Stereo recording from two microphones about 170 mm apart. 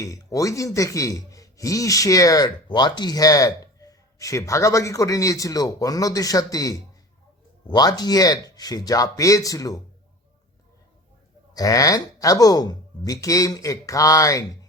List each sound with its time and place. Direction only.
0.0 s a man's voice: 20° left (ahead or behind)
11.5 s a man's voice: 20° left (ahead or behind)